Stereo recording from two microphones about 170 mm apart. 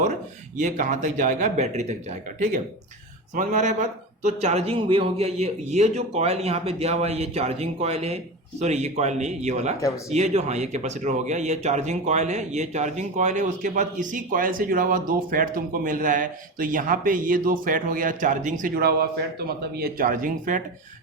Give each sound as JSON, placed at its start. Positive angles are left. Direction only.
{"t": 0.0, "sound": "speech", "side_deg": -45}
{"t": 3.3, "sound": "a man's voice", "side_deg": -45}
{"t": 19.7, "sound": "speech", "side_deg": -60}